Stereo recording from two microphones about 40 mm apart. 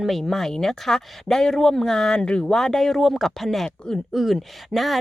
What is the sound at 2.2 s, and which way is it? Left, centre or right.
Speech, left.